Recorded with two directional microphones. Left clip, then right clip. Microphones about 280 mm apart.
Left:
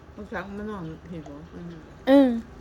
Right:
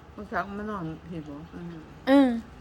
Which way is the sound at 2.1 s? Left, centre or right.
Centre.